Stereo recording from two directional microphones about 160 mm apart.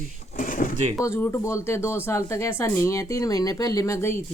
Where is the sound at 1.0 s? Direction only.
15° left (ahead or behind).